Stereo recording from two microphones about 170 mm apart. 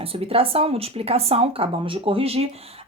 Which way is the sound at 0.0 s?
35° right (ahead or behind).